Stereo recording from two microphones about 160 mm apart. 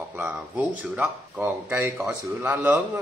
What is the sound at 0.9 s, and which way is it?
A man's voice, 10° right (ahead or behind).